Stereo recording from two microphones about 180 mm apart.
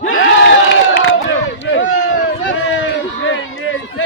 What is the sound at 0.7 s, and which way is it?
Crowd, 90° left.